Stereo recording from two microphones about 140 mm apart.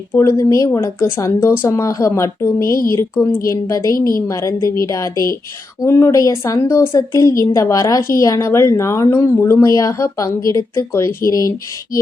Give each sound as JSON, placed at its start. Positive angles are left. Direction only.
{"t": 0.1, "sound": "a woman's voice", "side_deg": 20}